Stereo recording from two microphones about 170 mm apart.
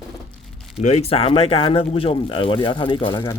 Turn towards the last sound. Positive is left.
turn(degrees=30)  # may be behind; listen again after turning